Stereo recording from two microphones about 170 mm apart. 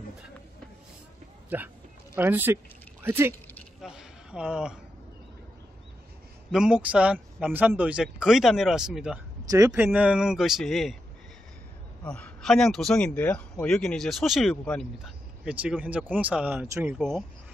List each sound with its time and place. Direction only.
1.5 s speech: 10° right (ahead or behind)
3.8 s a sound: 5° right (ahead or behind)
6.5 s speech: 5° right (ahead or behind)
9.5 s speech: 20° right (ahead or behind)
9.9 s speech: 5° right (ahead or behind)
12.0 s speech: 5° left (ahead or behind)
15.4 s speech: 5° right (ahead or behind)